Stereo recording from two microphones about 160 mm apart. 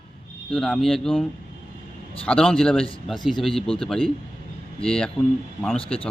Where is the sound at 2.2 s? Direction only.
5° left (ahead or behind).